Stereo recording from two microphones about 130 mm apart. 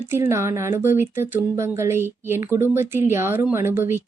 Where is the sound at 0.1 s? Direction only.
20° right (ahead or behind).